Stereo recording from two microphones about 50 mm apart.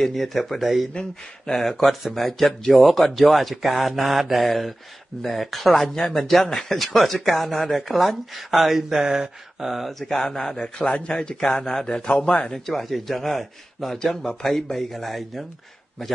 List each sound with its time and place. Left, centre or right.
0.0 s speech: centre
0.9 s speech: centre
1.6 s speech: centre
5.9 s a man's voice: centre
9.9 s a man's voice: centre
10.8 s a man's voice: left
12.6 s speech: centre